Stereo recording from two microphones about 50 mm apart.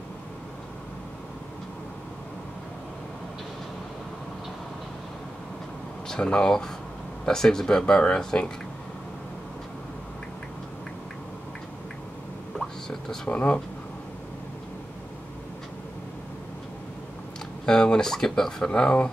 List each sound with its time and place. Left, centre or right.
6.0 s speech: centre
13.3 s speech: left
17.6 s speech: centre